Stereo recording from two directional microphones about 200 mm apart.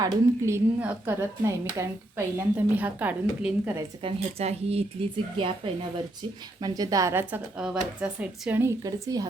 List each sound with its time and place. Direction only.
0.0 s speech: 15° right (ahead or behind)
4.0 s speech: 30° right (ahead or behind)